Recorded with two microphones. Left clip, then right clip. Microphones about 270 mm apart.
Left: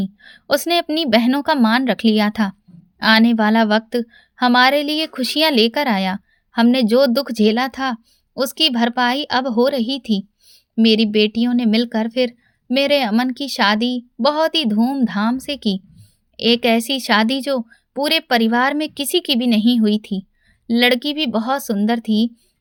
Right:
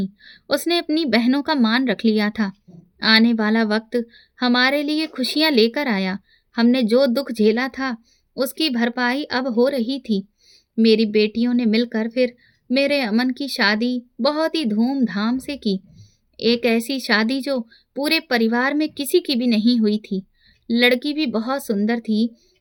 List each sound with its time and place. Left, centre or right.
0.2 s a woman's voice: centre